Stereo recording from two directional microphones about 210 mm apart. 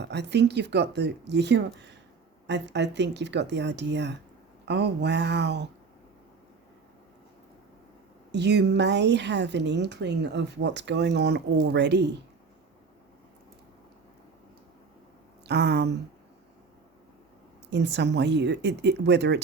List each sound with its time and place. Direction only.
0.0 s a woman's voice: 55° right (ahead or behind)
8.3 s a woman's voice: 55° right (ahead or behind)
15.4 s speech: 50° right (ahead or behind)
17.7 s a woman's voice: 55° right (ahead or behind)